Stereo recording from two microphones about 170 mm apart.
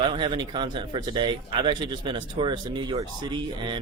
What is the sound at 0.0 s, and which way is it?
Speech, 30° right (ahead or behind).